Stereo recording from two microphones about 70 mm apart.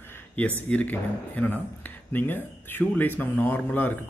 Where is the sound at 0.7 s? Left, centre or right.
Left.